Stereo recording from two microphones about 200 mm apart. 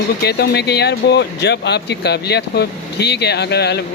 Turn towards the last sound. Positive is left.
turn(degrees=55)  # may be behind; listen again after turning